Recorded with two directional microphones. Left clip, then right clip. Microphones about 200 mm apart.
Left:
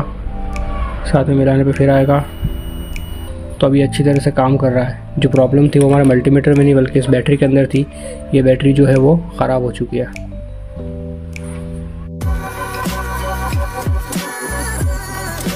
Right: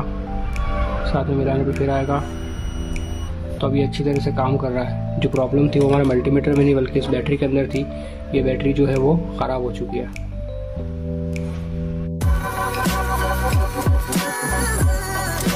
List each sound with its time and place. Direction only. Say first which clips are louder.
1.3 s speech: left 7 dB; 25° left (ahead or behind)
3.5 s speech: left 8 dB; 30° left (ahead or behind)
12.7 s music: right 1 dB; centre (ahead or behind)